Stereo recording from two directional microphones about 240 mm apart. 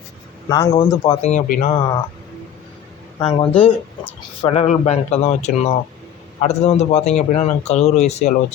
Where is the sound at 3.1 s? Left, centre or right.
Left.